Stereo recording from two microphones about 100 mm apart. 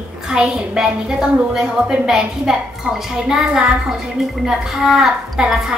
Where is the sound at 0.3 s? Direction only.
5° right (ahead or behind).